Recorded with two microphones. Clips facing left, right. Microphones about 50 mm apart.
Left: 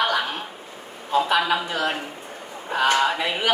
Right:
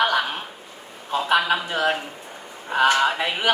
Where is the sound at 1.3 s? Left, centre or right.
Right.